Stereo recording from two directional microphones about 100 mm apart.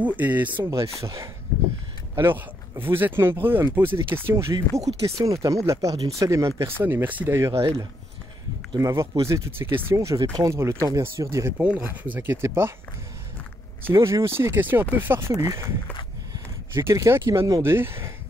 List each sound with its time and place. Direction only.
0.0 s speech: 15° right (ahead or behind)
0.7 s speech: 35° right (ahead or behind)
2.1 s speech: 25° right (ahead or behind)
4.4 s speech: 30° right (ahead or behind)
7.3 s speech: 30° right (ahead or behind)
8.7 s speech: 30° right (ahead or behind)
13.9 s speech: 30° right (ahead or behind)